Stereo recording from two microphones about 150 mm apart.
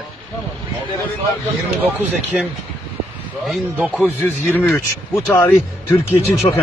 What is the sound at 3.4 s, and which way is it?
Speech, centre (ahead or behind).